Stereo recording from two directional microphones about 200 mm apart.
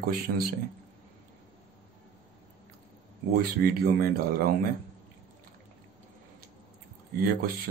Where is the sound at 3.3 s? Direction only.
50° right (ahead or behind).